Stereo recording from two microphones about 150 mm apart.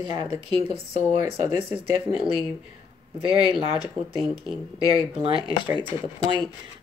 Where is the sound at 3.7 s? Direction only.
25° left (ahead or behind).